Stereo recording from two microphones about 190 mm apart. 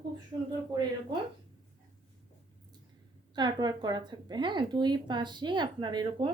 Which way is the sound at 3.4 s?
20° right (ahead or behind).